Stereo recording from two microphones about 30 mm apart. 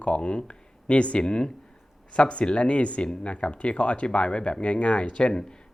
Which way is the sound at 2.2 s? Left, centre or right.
Left.